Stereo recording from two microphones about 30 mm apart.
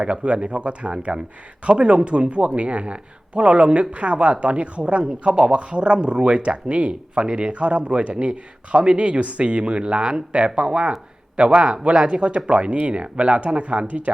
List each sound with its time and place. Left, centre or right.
0.0 s a man's voice: right